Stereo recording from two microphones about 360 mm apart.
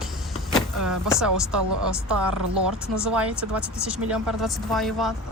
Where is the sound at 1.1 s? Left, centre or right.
Centre.